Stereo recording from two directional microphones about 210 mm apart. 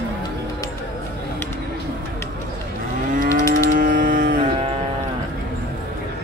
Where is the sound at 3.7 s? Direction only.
40° right (ahead or behind).